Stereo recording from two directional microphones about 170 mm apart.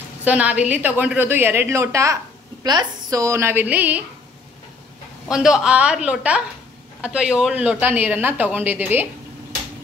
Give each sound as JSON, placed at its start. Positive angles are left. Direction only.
{"t": 0.2, "sound": "speech", "side_deg": -10}
{"t": 5.3, "sound": "speech", "side_deg": -5}